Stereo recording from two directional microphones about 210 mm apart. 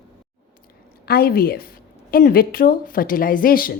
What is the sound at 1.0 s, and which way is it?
A woman's voice, 45° left (ahead or behind).